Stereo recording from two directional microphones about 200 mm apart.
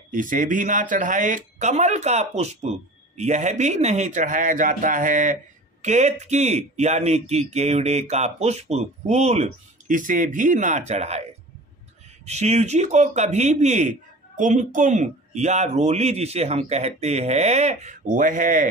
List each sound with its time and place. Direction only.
0.1 s speech: 40° right (ahead or behind)
12.3 s speech: 35° right (ahead or behind)